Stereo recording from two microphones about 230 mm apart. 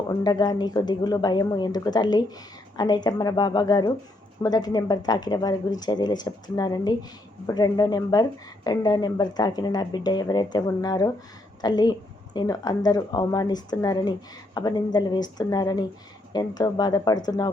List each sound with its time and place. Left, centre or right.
0.1 s croak: centre